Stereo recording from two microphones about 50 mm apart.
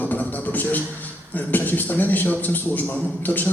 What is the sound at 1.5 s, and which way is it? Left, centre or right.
A man's voice, left.